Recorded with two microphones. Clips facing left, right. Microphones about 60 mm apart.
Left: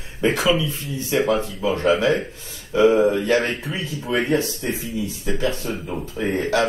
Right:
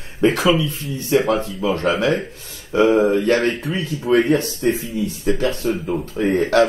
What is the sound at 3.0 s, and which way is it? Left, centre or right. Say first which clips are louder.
Speech: right 2 dB; right.